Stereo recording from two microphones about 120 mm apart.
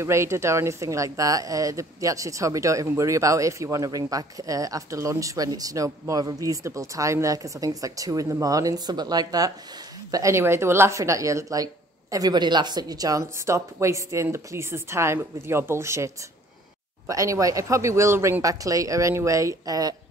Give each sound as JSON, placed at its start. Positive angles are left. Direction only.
{"t": 0.0, "sound": "a woman's voice", "side_deg": -25}
{"t": 17.1, "sound": "a woman's voice", "side_deg": -25}